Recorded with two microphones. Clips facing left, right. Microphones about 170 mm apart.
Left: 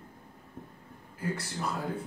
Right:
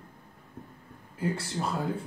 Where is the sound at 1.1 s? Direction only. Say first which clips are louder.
Right 4 dB; 25° right (ahead or behind).